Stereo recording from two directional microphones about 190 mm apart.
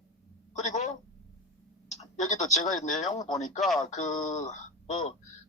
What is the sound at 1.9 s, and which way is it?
Clicking, 35° left (ahead or behind).